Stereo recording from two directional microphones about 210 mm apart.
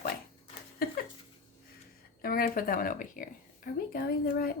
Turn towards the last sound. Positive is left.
turn(degrees=45)  # may be behind; listen again after turning